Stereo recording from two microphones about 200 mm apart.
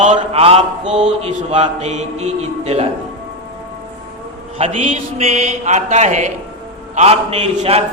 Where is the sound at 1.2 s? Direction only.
30° right (ahead or behind).